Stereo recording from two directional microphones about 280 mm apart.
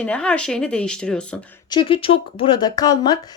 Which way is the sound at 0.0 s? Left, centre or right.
Centre.